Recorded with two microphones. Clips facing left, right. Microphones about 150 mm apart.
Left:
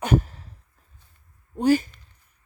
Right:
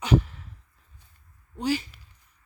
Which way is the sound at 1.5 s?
50° left (ahead or behind).